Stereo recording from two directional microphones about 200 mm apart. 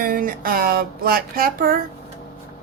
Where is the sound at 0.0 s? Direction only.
45° right (ahead or behind).